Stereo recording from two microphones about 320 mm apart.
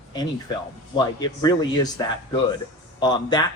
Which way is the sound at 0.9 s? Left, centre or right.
Centre.